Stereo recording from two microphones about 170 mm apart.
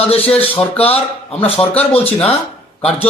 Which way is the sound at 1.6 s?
10° left (ahead or behind).